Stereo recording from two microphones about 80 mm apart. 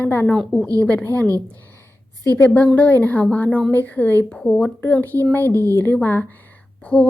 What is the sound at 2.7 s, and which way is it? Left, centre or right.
Speech, left.